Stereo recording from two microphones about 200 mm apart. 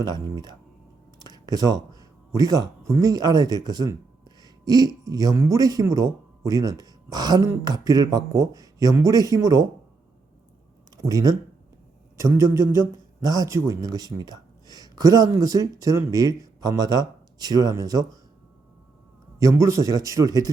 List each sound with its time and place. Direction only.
0.0 s a man's voice: 20° right (ahead or behind)
10.9 s a man's voice: 15° right (ahead or behind)
19.4 s a man's voice: 15° right (ahead or behind)